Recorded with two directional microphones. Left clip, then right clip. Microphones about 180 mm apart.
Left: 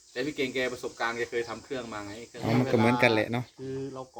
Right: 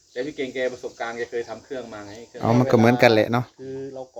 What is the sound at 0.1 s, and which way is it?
Speech, 25° left (ahead or behind).